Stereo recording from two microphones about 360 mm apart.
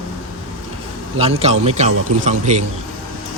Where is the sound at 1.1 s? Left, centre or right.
Centre.